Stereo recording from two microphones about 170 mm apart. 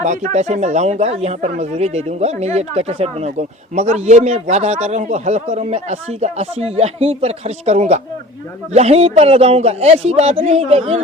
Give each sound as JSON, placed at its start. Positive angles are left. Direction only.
{"t": 0.0, "sound": "a man's voice", "side_deg": -45}